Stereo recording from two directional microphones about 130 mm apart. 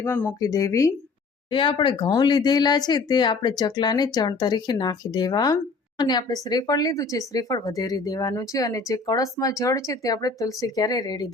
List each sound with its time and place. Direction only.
0.0 s speech: 15° left (ahead or behind)
0.3 s speech: 25° left (ahead or behind)
1.5 s speech: 40° left (ahead or behind)